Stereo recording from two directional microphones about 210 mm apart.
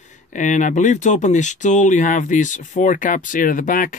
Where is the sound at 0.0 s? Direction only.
35° left (ahead or behind).